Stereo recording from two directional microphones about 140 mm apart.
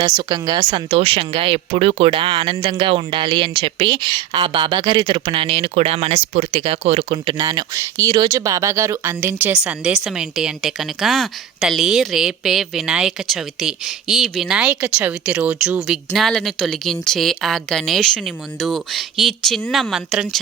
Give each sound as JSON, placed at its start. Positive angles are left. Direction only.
{"t": 0.0, "sound": "speech", "side_deg": -30}
{"t": 0.6, "sound": "speech", "side_deg": -45}